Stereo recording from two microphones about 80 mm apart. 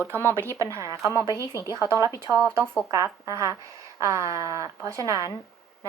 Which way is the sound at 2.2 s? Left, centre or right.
Right.